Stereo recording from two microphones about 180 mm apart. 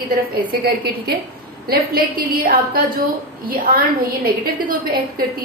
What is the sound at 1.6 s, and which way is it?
A woman's voice, 55° right (ahead or behind).